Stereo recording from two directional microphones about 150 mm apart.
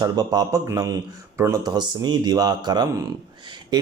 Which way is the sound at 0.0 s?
25° right (ahead or behind).